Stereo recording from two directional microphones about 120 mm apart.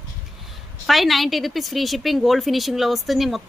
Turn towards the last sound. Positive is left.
turn(degrees=0)  # may be behind; listen again after turning